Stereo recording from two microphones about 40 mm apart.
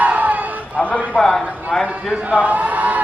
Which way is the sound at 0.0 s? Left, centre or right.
Right.